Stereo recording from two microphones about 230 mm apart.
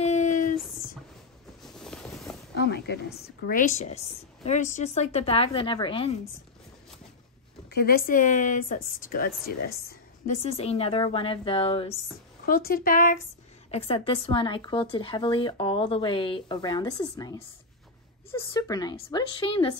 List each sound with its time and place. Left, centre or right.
0.0 s a sound: left
1.6 s boat: centre
2.5 s a sound: left
3.4 s speech: left
7.7 s a woman's voice: left
10.4 s speech: left
12.4 s speech: left
13.7 s speech: left